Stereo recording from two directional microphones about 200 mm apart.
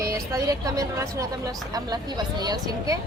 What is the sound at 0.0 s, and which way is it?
A woman's voice, 15° right (ahead or behind).